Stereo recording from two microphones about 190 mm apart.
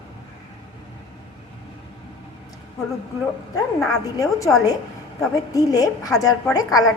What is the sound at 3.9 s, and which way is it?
A woman's voice, 20° left (ahead or behind).